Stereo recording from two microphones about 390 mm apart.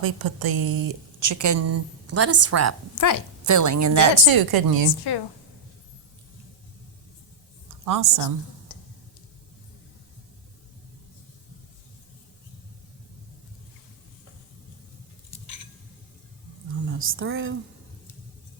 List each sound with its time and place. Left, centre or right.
0.0 s a woman's voice: right
2.9 s a woman's voice: left
3.4 s a woman's voice: right
7.9 s a woman's voice: right
16.9 s a woman's voice: right